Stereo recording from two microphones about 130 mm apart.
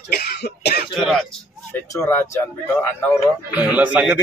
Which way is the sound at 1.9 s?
20° left (ahead or behind).